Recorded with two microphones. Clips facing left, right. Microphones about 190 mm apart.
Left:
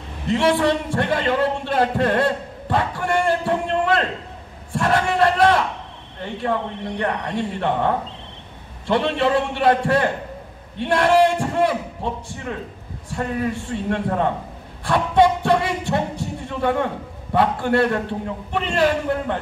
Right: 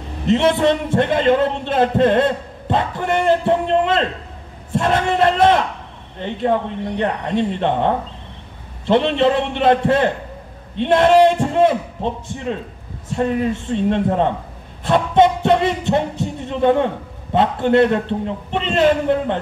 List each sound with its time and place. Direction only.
0.3 s a man's voice: 20° right (ahead or behind)
14.9 s heart murmur: 20° right (ahead or behind)